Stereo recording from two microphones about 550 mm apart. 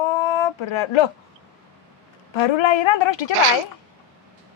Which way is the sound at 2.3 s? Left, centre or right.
Left.